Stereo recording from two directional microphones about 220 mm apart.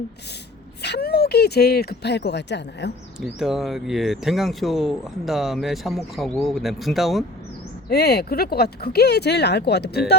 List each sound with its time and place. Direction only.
0.8 s speech: 50° left (ahead or behind)
3.2 s speech: centre (ahead or behind)
7.9 s speech: 45° left (ahead or behind)